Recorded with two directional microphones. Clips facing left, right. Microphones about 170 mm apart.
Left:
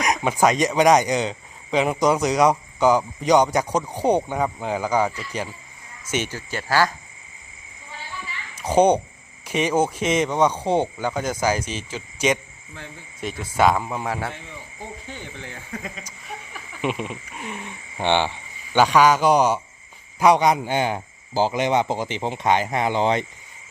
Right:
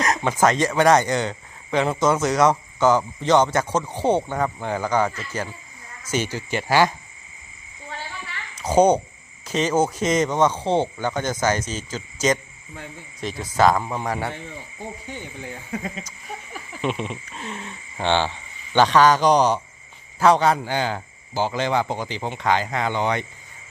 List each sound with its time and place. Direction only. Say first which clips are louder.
0.0 s speech: even; 15° left (ahead or behind)
6.3 s speech: right 3 dB; 15° right (ahead or behind)
9.5 s speech: even; 10° left (ahead or behind)
15.1 s speech: right 2 dB; 10° right (ahead or behind)
16.8 s speech: even; 5° left (ahead or behind); by 23.2 s 25° left (ahead or behind)